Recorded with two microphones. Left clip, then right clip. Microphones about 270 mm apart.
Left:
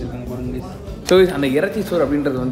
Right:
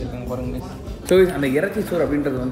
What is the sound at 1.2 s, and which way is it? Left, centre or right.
A man's voice, centre.